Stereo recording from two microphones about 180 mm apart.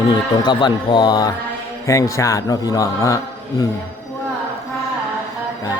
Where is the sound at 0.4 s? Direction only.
25° left (ahead or behind).